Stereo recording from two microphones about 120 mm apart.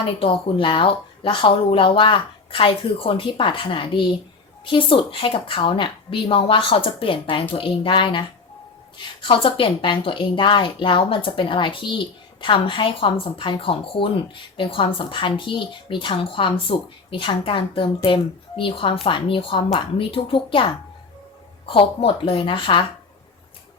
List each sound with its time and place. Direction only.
0.0 s speech: 45° left (ahead or behind)
21.7 s speech: 45° left (ahead or behind)